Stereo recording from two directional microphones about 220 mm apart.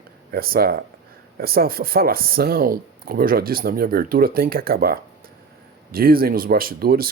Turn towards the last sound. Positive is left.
turn(degrees=-40)  # may be behind; listen again after turning